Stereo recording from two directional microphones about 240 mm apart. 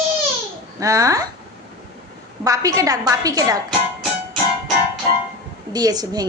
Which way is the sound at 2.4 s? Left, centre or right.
Centre.